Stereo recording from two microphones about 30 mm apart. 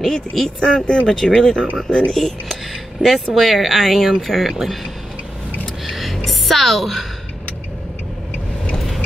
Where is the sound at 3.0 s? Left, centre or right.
Right.